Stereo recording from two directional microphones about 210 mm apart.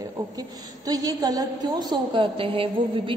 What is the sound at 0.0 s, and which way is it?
A woman's voice, 15° right (ahead or behind).